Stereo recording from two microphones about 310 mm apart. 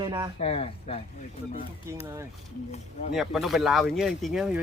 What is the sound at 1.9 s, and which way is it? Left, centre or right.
Speech, centre.